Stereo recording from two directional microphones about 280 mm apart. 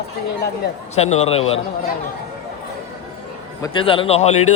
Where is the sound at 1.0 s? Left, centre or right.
Left.